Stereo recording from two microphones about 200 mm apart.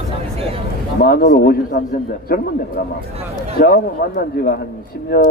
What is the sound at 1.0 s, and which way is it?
A man's voice, 50° left (ahead or behind).